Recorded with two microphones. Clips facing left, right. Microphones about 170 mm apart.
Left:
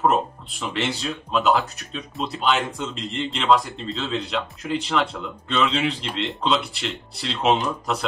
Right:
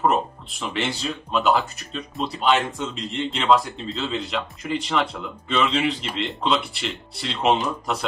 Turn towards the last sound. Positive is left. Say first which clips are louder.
# even
turn(degrees=0)  # may be behind; listen again after turning